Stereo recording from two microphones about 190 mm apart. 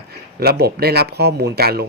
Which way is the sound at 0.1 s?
55° right (ahead or behind).